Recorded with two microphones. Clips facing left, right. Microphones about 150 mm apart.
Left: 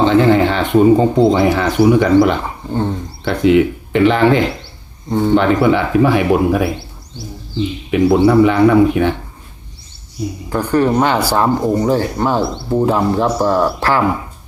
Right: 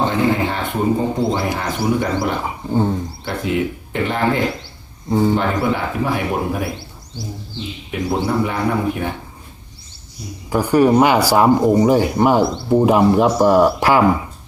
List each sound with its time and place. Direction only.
0.0 s speech: 90° left
2.4 s a sound: 5° right (ahead or behind)
3.2 s speech: 90° left
7.9 s speech: 90° left
10.5 s speech: 10° right (ahead or behind)